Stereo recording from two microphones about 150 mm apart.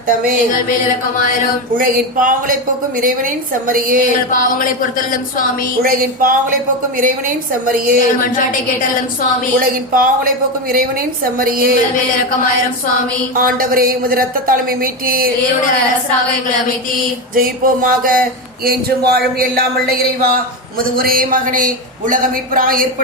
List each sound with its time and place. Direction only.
0.1 s speech: 70° right (ahead or behind)
1.8 s speech: 65° right (ahead or behind)
4.3 s a sound: 65° left (ahead or behind)
5.8 s speech: 70° right (ahead or behind)
9.6 s speech: 70° right (ahead or behind)
13.3 s speech: 70° right (ahead or behind)
17.3 s speech: 70° right (ahead or behind)
21.0 s speech: 70° right (ahead or behind)